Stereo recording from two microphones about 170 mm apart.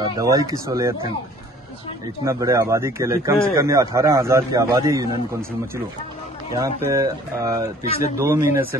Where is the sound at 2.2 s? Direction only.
15° right (ahead or behind).